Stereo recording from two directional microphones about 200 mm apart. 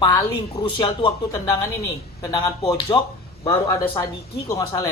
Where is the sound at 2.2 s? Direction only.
15° left (ahead or behind).